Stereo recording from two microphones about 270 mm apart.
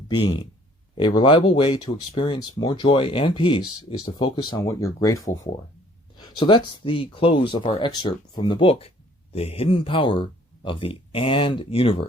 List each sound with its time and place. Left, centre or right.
0.2 s speech: centre